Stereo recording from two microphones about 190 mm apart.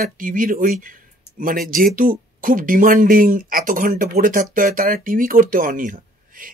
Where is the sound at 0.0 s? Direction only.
45° right (ahead or behind).